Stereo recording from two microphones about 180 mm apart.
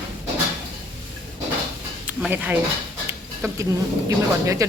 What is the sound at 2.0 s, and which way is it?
Speech, 10° right (ahead or behind).